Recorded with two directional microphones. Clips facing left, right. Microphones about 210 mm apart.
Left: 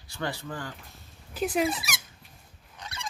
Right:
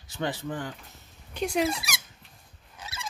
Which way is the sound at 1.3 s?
5° left (ahead or behind).